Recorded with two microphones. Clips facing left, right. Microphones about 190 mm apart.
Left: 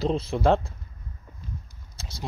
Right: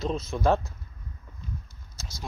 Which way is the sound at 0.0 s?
30° left (ahead or behind).